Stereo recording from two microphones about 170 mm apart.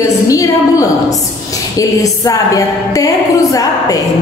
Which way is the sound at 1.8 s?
20° left (ahead or behind).